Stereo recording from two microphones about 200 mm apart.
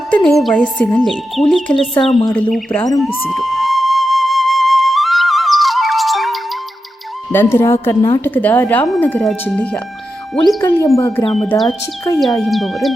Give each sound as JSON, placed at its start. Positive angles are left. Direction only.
{"t": 0.1, "sound": "speech", "side_deg": 0}
{"t": 3.0, "sound": "flute", "side_deg": 5}
{"t": 7.3, "sound": "speech", "side_deg": 15}
{"t": 11.3, "sound": "speech", "side_deg": 0}
{"t": 12.1, "sound": "speech", "side_deg": 15}
{"t": 12.4, "sound": "speech", "side_deg": 0}